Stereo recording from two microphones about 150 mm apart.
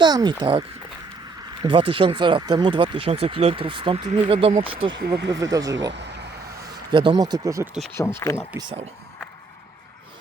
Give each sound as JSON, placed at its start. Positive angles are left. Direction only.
{"t": 0.0, "sound": "speech", "side_deg": -30}
{"t": 1.6, "sound": "speech", "side_deg": -35}
{"t": 5.3, "sound": "speech", "side_deg": -25}
{"t": 6.9, "sound": "speech", "side_deg": -30}
{"t": 8.2, "sound": "speech", "side_deg": 15}